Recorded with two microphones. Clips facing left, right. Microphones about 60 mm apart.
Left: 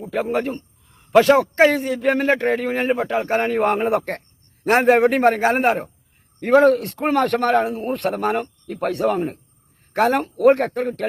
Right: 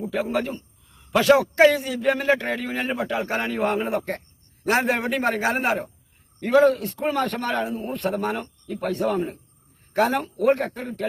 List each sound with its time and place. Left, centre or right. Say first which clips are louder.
0.0 s a man's voice: left 3 dB; left